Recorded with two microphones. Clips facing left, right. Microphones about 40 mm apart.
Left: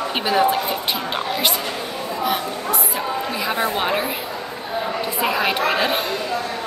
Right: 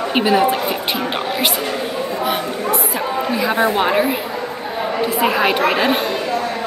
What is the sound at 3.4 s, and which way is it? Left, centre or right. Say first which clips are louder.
Speech: right 6 dB; centre.